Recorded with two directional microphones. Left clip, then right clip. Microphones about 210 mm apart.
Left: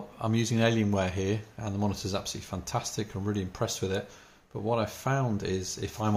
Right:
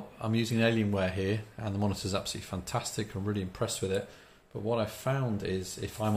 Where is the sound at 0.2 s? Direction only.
25° left (ahead or behind).